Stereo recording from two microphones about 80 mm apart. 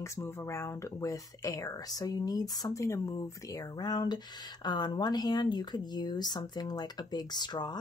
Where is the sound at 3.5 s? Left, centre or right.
Left.